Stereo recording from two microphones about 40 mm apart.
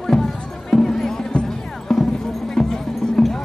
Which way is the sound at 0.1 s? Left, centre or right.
Centre.